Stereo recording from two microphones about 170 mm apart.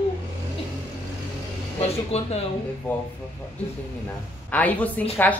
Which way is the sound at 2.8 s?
5° left (ahead or behind).